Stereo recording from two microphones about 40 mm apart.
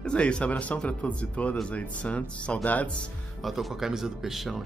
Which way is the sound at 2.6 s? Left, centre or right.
Left.